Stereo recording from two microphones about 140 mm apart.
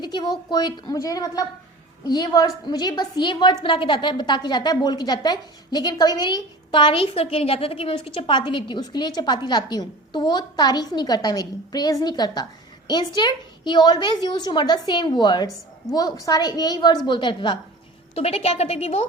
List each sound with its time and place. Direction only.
0.0 s a woman's voice: 30° left (ahead or behind)
18.1 s a woman's voice: 45° left (ahead or behind)